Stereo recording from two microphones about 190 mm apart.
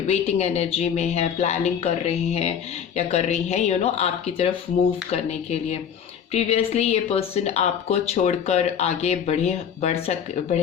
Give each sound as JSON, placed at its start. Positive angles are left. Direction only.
{"t": 0.1, "sound": "speech", "side_deg": 35}